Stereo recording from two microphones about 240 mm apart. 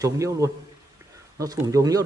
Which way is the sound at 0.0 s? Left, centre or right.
Centre.